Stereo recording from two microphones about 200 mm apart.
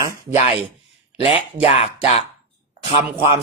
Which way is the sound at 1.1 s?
25° left (ahead or behind).